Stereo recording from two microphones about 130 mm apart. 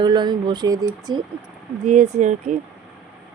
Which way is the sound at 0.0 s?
35° right (ahead or behind).